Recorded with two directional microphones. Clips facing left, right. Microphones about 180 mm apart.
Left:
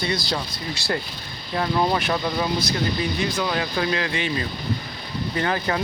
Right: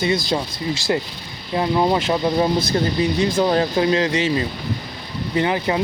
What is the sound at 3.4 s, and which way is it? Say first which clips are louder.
Speech: right 7 dB; 35° right (ahead or behind).